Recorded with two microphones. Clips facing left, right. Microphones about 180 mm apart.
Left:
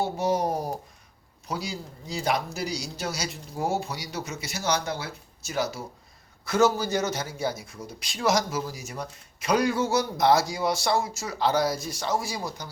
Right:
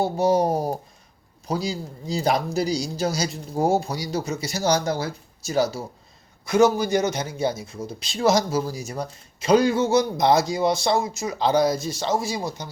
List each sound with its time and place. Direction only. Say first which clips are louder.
0.0 s speech: right 5 dB; 30° right (ahead or behind)
6.4 s speech: right 4 dB; 15° right (ahead or behind)